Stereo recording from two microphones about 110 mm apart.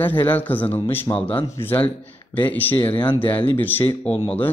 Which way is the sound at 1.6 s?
15° left (ahead or behind).